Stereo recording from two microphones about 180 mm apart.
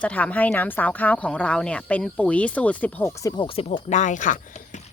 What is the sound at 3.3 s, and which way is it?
Speech, 30° left (ahead or behind).